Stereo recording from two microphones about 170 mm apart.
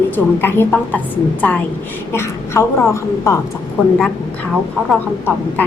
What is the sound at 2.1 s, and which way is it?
A woman's voice, 15° left (ahead or behind).